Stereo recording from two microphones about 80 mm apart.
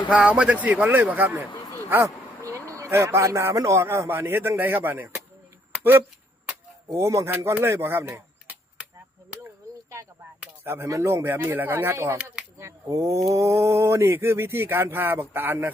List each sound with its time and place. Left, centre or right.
0.1 s speech: centre
2.0 s speech: right
6.9 s speech: right
10.4 s a sound: right
10.8 s speech: right
12.1 s speech: centre
12.5 s speech: right